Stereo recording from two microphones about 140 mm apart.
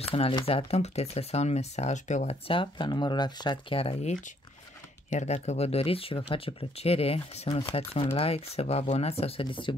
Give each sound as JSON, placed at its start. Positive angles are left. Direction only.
{"t": 0.0, "sound": "speech", "side_deg": 45}
{"t": 5.1, "sound": "speech", "side_deg": 50}